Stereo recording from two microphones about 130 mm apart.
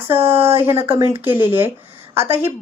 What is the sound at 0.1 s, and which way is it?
A woman's voice, 15° right (ahead or behind).